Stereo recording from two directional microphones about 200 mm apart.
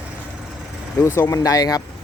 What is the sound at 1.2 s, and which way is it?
Speech, 15° left (ahead or behind).